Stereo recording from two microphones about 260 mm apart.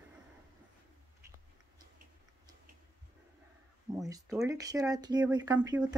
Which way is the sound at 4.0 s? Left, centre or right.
Centre.